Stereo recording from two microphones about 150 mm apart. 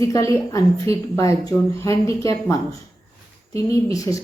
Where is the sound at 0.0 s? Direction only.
20° left (ahead or behind).